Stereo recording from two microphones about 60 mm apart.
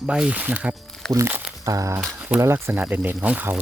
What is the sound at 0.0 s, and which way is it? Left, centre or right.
Speech, centre.